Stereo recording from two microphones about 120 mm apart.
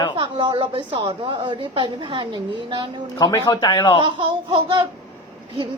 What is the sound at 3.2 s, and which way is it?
Speech, 35° left (ahead or behind).